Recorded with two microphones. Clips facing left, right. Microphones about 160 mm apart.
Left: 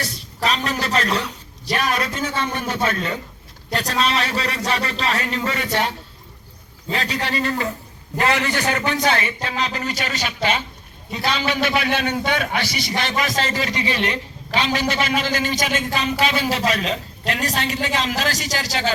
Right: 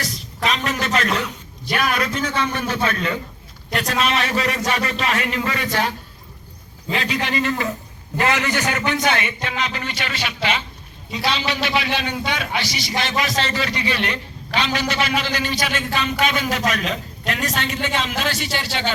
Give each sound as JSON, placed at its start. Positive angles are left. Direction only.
{"t": 0.0, "sound": "a man's voice", "side_deg": 30}
{"t": 2.6, "sound": "a man's voice", "side_deg": 25}
{"t": 3.7, "sound": "a man's voice", "side_deg": 35}
{"t": 6.9, "sound": "a man's voice", "side_deg": 35}
{"t": 13.5, "sound": "a man's voice", "side_deg": 35}